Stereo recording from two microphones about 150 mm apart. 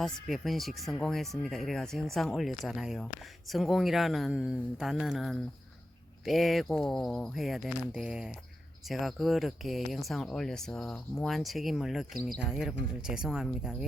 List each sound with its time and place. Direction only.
0.0 s speech: centre (ahead or behind)